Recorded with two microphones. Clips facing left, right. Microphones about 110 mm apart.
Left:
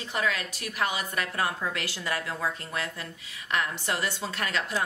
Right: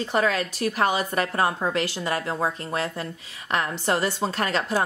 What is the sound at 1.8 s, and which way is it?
A woman's voice, 25° right (ahead or behind).